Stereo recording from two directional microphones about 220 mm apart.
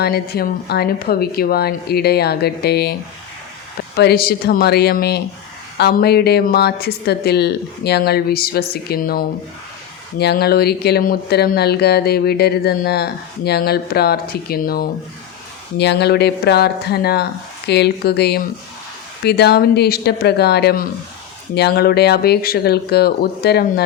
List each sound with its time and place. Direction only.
0.0 s speech: 45° left (ahead or behind)
3.9 s speech: 45° left (ahead or behind)